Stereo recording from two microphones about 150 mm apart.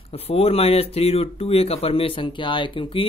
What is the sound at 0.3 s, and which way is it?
Speech, 40° left (ahead or behind).